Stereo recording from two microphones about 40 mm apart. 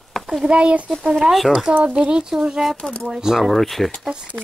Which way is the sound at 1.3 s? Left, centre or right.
Centre.